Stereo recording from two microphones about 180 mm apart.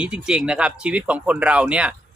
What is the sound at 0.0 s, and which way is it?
A man's voice, 5° right (ahead or behind).